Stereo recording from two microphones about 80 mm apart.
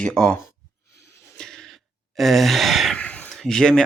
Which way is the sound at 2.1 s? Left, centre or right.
Centre.